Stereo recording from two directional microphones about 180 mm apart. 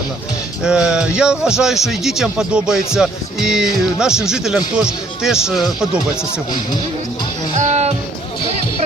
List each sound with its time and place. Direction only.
0.6 s a man's voice: 5° right (ahead or behind)
7.5 s music: 40° right (ahead or behind)